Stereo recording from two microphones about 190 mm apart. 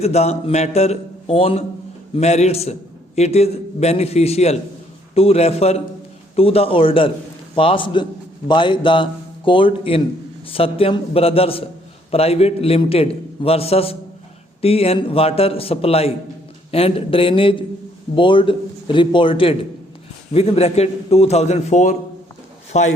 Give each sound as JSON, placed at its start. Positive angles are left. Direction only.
{"t": 0.0, "sound": "a man's voice", "side_deg": 35}